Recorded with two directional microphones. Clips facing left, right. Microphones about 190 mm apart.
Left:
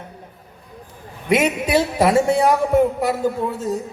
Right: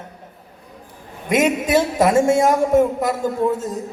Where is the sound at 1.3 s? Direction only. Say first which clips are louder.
Right 1 dB; 45° right (ahead or behind).